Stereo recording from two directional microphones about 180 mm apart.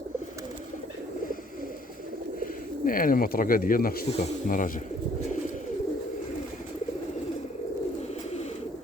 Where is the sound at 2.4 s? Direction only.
50° left (ahead or behind).